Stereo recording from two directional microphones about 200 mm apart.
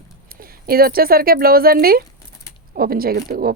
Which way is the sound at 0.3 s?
50° right (ahead or behind).